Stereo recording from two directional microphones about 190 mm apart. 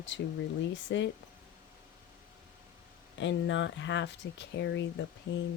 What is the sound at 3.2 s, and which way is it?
Speech, 75° left (ahead or behind).